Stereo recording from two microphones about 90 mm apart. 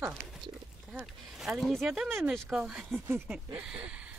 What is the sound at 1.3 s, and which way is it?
Speech, centre (ahead or behind).